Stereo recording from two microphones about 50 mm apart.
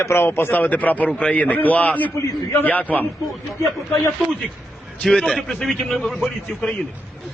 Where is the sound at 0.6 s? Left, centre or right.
Left.